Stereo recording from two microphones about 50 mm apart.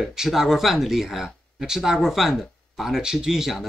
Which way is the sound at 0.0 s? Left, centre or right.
Centre.